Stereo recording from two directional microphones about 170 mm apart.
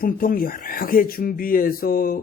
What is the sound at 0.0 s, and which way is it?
Speech, 55° left (ahead or behind).